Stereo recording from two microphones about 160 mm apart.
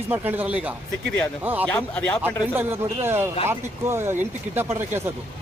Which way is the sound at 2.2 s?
15° right (ahead or behind).